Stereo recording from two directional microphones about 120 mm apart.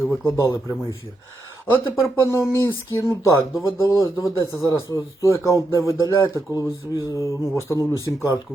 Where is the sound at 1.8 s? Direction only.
25° left (ahead or behind).